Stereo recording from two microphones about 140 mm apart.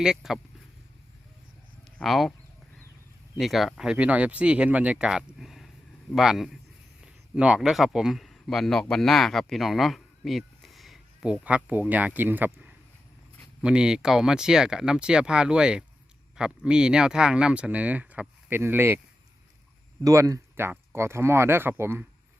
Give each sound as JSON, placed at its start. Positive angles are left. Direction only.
{"t": 0.0, "sound": "speech", "side_deg": -5}
{"t": 2.0, "sound": "speech", "side_deg": 0}
{"t": 3.3, "sound": "speech", "side_deg": 0}
{"t": 20.1, "sound": "speech", "side_deg": -25}